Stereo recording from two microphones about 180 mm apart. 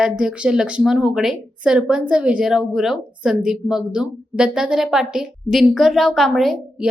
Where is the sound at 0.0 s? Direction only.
5° right (ahead or behind).